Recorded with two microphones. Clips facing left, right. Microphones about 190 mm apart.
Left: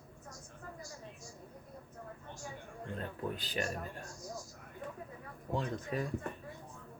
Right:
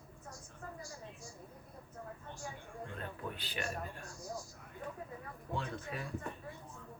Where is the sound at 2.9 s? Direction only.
40° left (ahead or behind).